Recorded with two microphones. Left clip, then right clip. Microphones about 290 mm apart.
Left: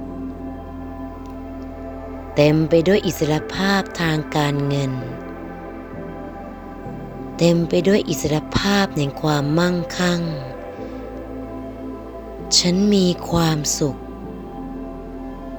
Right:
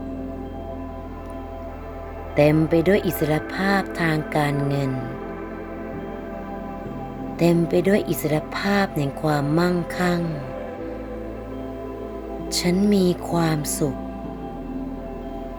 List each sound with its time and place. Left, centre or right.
2.3 s speech: centre
7.3 s speech: centre
12.6 s speech: centre